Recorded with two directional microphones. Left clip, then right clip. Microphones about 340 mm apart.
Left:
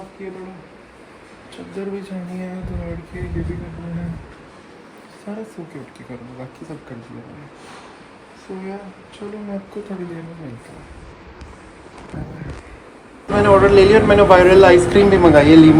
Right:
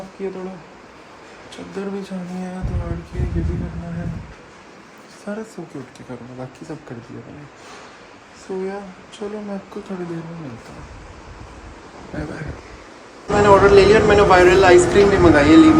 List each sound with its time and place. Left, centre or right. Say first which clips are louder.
13.3 s speech: even; centre